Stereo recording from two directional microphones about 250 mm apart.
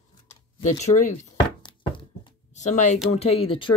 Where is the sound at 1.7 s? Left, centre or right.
Centre.